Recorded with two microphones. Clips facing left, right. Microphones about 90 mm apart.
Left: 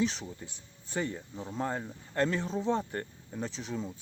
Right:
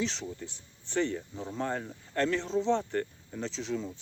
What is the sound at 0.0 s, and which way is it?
Speech, 10° left (ahead or behind).